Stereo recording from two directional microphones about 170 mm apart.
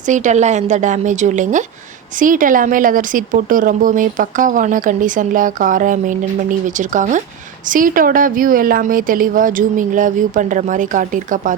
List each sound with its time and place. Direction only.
0.0 s speech: 45° right (ahead or behind)